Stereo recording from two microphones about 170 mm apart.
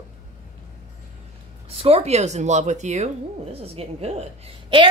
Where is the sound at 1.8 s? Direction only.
35° right (ahead or behind).